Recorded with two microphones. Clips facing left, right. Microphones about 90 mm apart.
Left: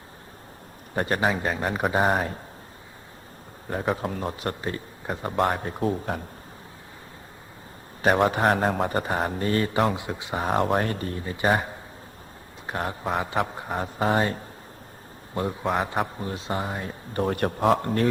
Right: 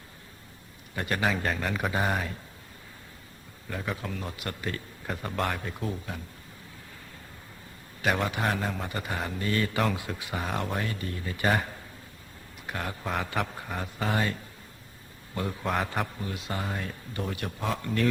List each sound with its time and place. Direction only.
0.9 s a man's voice: 35° left (ahead or behind)
3.7 s a man's voice: 35° left (ahead or behind)
8.0 s a man's voice: 35° left (ahead or behind)
10.4 s a man's voice: 40° left (ahead or behind); by 16.9 s 25° left (ahead or behind)
17.2 s a man's voice: 50° left (ahead or behind)